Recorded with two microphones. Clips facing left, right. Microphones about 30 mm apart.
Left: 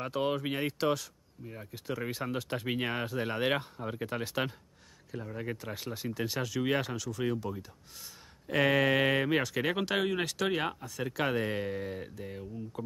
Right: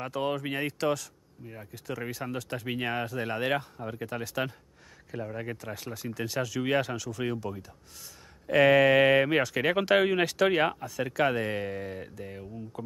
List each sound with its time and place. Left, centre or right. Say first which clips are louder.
0.1 s speech: right 1 dB; centre
2.8 s speech: right 2 dB; centre
5.1 s speech: right 4 dB; centre
5.6 s speech: right 1 dB; centre
8.5 s speech: right 6 dB; centre
11.1 s speech: right 4 dB; centre